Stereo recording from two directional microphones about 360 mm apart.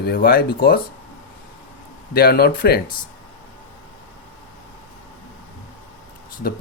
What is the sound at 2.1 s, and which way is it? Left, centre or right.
Speech, left.